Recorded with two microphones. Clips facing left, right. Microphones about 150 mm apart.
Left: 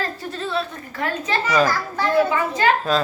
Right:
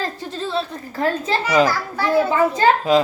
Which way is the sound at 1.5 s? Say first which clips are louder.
Right 2 dB; 15° right (ahead or behind).